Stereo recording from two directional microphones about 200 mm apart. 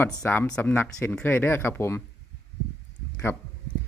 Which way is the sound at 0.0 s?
5° left (ahead or behind).